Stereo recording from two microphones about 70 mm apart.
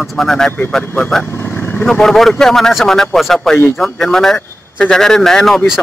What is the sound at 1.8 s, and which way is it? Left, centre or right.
Speech, centre.